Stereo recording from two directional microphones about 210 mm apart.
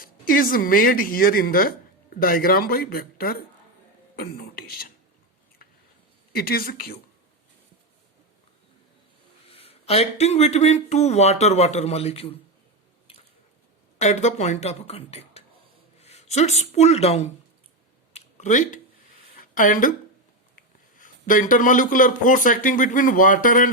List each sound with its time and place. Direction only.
0.0 s a woman's voice: 40° left (ahead or behind)
6.3 s a woman's voice: 45° left (ahead or behind)
9.5 s speech: 30° left (ahead or behind)
13.1 s squish: 25° left (ahead or behind)
14.0 s speech: 35° left (ahead or behind)
18.1 s a sound: 35° left (ahead or behind)
20.6 s speech: 40° left (ahead or behind)